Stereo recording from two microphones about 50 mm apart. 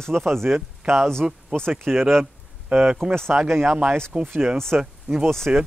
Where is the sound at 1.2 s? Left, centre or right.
Centre.